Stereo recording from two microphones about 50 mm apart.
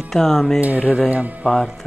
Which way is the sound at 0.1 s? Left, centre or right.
Centre.